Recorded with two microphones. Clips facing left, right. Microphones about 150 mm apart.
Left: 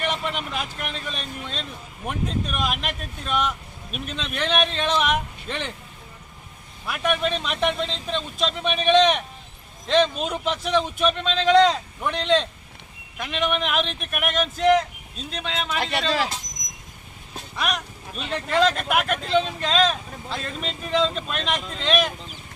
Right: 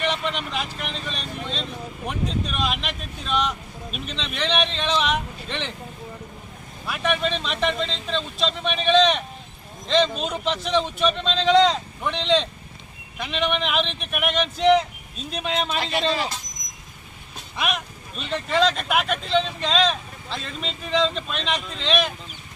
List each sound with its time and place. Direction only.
0.0 s speech: 5° left (ahead or behind)
6.8 s speech: 5° left (ahead or behind)
15.3 s speech: 10° right (ahead or behind)
15.5 s speech: 25° right (ahead or behind)
15.8 s speech: 80° left
17.6 s speech: 5° right (ahead or behind)